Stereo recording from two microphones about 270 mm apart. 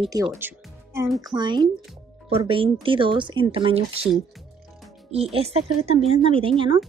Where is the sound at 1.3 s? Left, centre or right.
Centre.